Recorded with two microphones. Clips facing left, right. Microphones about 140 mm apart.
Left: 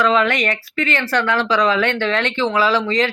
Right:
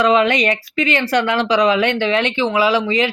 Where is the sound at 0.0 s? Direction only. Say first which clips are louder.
Right 3 dB; 15° right (ahead or behind).